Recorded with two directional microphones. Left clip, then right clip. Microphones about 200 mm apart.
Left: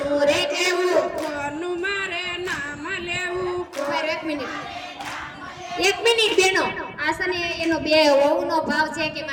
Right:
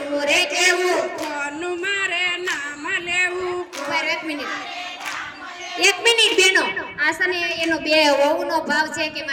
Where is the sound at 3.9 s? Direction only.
20° right (ahead or behind).